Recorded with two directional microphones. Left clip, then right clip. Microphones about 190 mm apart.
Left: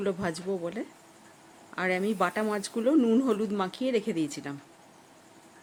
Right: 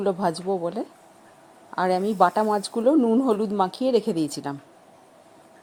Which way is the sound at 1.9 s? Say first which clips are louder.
Right 4 dB; 10° right (ahead or behind).